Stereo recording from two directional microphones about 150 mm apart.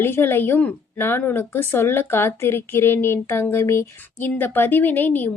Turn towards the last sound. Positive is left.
turn(degrees=10)  # may be behind; listen again after turning